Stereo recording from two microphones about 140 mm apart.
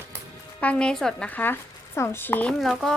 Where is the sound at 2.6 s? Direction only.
Centre (ahead or behind).